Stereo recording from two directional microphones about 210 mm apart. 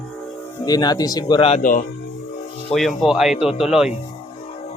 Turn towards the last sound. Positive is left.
turn(degrees=0)  # may be behind; listen again after turning